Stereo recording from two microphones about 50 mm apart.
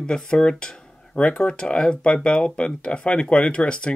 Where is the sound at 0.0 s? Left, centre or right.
Centre.